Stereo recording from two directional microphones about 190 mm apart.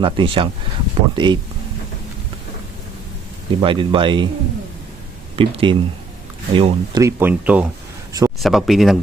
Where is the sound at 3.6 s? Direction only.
25° right (ahead or behind).